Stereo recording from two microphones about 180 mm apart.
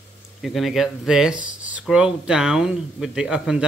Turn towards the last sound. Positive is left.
turn(degrees=-5)  # may be behind; listen again after turning